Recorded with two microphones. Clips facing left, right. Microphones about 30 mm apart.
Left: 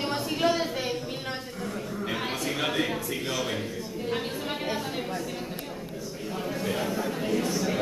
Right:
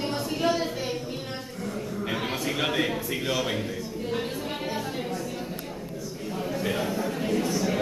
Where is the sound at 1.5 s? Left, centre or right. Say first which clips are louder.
Right 1 dB; centre.